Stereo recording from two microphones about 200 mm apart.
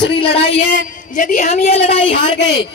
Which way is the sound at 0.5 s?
40° left (ahead or behind).